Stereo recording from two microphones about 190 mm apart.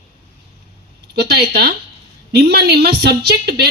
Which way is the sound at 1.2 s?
55° right (ahead or behind).